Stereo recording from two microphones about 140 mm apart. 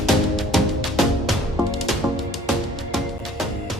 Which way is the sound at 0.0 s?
Centre (ahead or behind).